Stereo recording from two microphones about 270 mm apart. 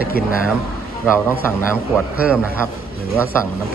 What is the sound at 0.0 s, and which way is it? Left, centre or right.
Speech, left.